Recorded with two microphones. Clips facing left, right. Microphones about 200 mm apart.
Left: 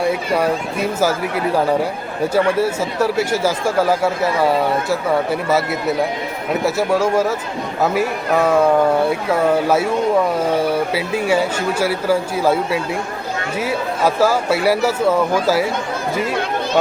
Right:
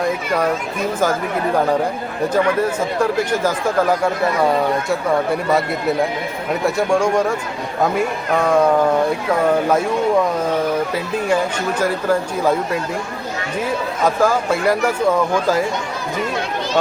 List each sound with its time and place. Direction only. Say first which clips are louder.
0.0 s speech: left 1 dB; 10° left (ahead or behind)
2.3 s speech: left 1 dB; 10° left (ahead or behind)
9.6 s speech: even; 5° left (ahead or behind)